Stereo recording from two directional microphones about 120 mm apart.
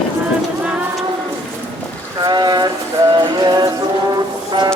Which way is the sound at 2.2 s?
35° right (ahead or behind).